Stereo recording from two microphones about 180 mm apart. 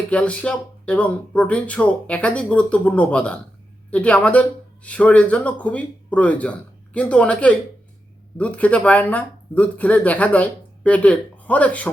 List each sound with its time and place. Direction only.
0.1 s speech: 5° left (ahead or behind)